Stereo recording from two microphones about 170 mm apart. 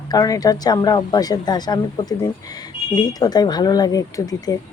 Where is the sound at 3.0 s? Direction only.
25° left (ahead or behind).